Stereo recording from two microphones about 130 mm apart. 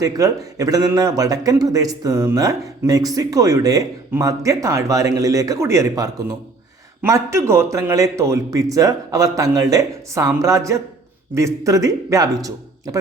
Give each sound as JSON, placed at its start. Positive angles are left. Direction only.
{"t": 0.0, "sound": "speech", "side_deg": -25}